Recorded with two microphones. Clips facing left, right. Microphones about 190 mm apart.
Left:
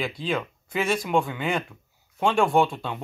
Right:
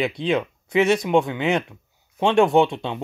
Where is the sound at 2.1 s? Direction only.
20° right (ahead or behind).